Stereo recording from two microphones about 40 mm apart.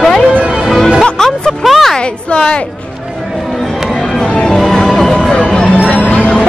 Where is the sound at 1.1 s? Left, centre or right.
Centre.